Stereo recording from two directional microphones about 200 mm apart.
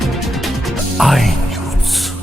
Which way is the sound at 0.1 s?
Centre (ahead or behind).